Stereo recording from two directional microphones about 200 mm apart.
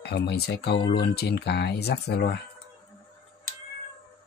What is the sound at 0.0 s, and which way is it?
Speech, 55° left (ahead or behind).